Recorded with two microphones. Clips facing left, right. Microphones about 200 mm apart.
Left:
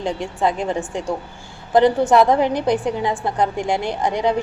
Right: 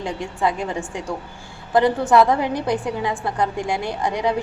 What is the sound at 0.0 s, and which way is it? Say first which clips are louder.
A woman's voice: left 2 dB; 25° left (ahead or behind).